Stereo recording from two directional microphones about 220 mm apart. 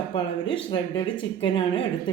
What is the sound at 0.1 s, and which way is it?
A woman's voice, 25° left (ahead or behind).